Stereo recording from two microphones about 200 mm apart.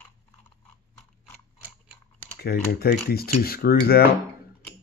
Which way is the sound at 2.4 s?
50° left (ahead or behind).